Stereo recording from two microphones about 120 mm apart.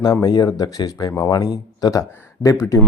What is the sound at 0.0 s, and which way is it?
Speech, 35° left (ahead or behind).